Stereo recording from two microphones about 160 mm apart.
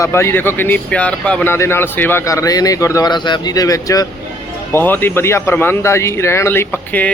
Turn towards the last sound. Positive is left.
turn(degrees=10)  # may be behind; listen again after turning